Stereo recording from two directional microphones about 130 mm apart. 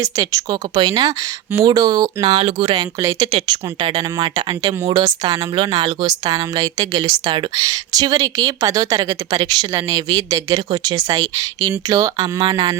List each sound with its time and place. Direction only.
0.0 s speech: 25° right (ahead or behind)
3.3 s speech: 40° right (ahead or behind)